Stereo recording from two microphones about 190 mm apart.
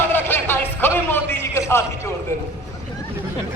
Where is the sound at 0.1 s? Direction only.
10° left (ahead or behind).